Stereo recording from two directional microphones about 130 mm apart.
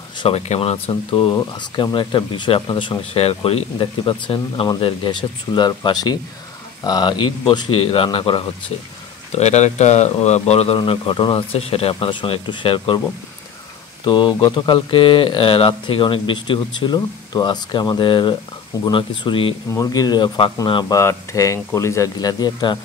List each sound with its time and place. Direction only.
0.2 s speech: 50° left (ahead or behind)
1.3 s speech: 35° left (ahead or behind)
9.3 s speech: 60° left (ahead or behind)
10.8 s speech: 40° left (ahead or behind)
11.5 s speech: 50° left (ahead or behind)
14.0 s speech: 40° left (ahead or behind)
19.7 s speech: 25° left (ahead or behind)
20.9 s speech: 20° left (ahead or behind)